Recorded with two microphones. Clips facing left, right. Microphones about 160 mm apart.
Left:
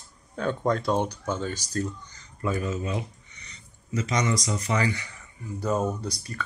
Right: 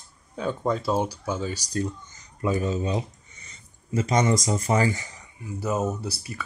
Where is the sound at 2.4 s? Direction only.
30° right (ahead or behind).